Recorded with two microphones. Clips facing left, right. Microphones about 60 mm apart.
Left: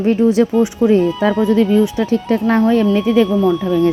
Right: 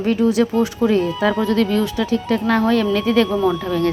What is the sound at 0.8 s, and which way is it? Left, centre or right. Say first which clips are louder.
Speech: left 4 dB; centre.